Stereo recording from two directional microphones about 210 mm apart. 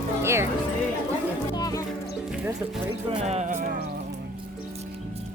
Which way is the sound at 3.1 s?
30° right (ahead or behind).